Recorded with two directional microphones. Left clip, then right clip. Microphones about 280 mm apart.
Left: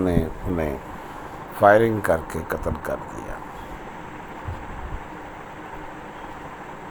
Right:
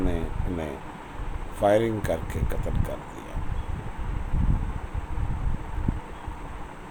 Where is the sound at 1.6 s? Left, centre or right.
Centre.